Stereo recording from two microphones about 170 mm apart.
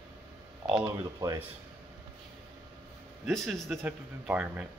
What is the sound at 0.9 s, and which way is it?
Speech, 20° right (ahead or behind).